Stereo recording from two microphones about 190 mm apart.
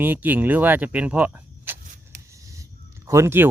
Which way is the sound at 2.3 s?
15° right (ahead or behind).